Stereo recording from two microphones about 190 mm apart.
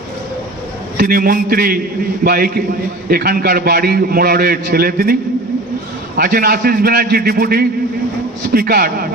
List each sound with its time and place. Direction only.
0.9 s a man's voice: 50° right (ahead or behind)
6.1 s a man's voice: 50° right (ahead or behind)